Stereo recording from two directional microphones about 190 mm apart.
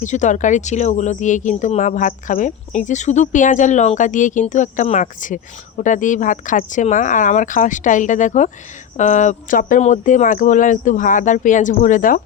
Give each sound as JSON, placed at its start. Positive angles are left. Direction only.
{"t": 0.0, "sound": "speech", "side_deg": 40}